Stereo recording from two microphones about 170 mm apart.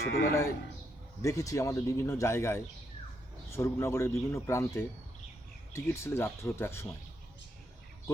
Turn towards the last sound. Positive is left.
turn(degrees=15)  # may be behind; listen again after turning